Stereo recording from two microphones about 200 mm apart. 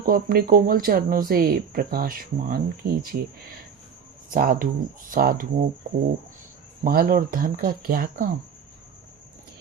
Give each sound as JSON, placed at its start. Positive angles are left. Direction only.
{"t": 0.0, "sound": "speech", "side_deg": -45}
{"t": 4.3, "sound": "speech", "side_deg": -45}
{"t": 6.8, "sound": "speech", "side_deg": -45}